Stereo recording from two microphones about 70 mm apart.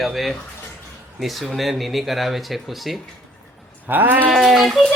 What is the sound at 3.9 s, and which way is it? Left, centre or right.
Speech, right.